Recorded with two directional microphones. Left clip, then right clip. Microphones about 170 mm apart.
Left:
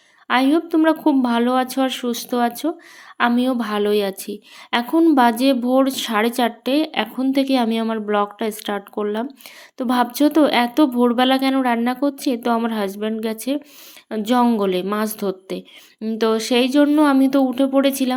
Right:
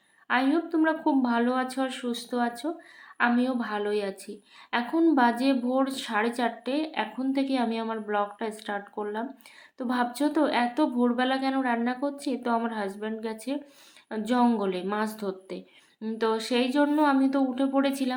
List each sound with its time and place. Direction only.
0.3 s a woman's voice: 50° left (ahead or behind)